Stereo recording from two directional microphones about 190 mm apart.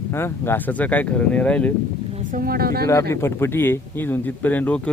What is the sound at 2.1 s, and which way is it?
Speech, 45° right (ahead or behind).